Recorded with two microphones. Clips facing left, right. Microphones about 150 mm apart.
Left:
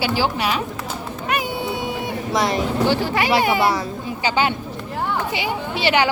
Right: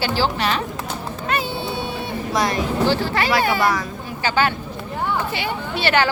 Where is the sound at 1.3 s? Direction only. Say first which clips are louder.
Left 1 dB; 15° left (ahead or behind).